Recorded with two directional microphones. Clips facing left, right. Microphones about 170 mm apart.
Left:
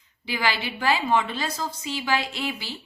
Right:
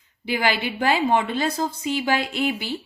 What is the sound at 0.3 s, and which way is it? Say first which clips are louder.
A woman's voice: right 4 dB; 50° right (ahead or behind).